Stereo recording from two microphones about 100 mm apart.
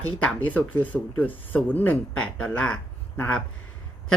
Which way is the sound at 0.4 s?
15° left (ahead or behind).